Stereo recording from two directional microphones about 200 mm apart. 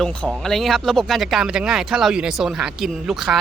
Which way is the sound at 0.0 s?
5° left (ahead or behind).